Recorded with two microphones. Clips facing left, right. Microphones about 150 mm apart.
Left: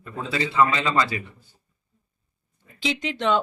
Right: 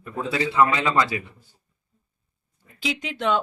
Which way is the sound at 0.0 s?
10° right (ahead or behind).